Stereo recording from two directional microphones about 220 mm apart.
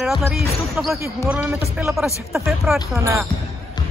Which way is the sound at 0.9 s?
10° right (ahead or behind).